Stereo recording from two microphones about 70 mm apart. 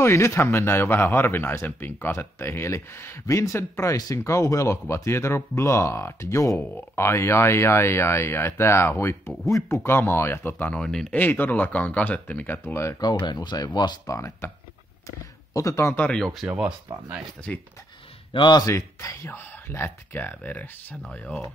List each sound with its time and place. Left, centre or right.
0.0 s speech: left
3.9 s speech: left
4.2 s speech: left
10.8 s speech: centre
11.1 s speech: left
12.6 s speech: left
13.0 s speech: left
15.0 s speech: left
15.9 s speech: centre
16.2 s speech: centre
16.9 s speech: right
17.5 s speech: centre
18.4 s speech: left
18.7 s speech: left; by 21.4 s centre